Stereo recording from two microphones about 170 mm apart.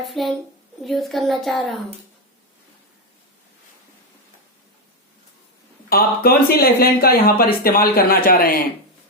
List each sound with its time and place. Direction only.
0.0 s speech: centre (ahead or behind)
5.9 s speech: 60° left (ahead or behind)